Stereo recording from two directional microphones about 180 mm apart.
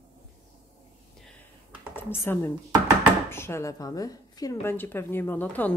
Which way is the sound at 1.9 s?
10° left (ahead or behind).